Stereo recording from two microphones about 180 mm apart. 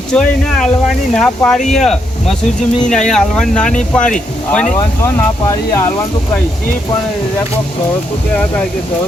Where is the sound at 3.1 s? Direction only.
5° left (ahead or behind).